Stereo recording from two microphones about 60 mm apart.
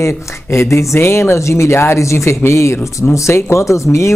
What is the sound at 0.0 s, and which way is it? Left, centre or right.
Speech, left.